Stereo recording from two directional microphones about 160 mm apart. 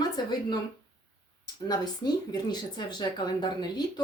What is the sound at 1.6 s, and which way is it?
Speech, 25° left (ahead or behind).